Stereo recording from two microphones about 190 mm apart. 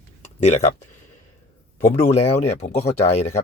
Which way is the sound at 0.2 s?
35° left (ahead or behind).